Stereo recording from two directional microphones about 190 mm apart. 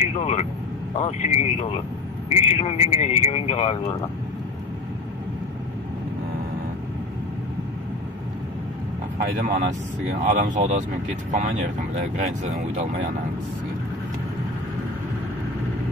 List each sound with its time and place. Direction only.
0.0 s a man's voice: 35° left (ahead or behind)
9.2 s speech: 50° right (ahead or behind)